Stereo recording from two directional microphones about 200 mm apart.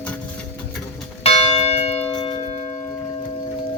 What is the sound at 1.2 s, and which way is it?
Church bell, 35° left (ahead or behind).